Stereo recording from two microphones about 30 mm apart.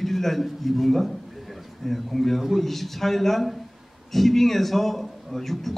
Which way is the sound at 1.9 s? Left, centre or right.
Centre.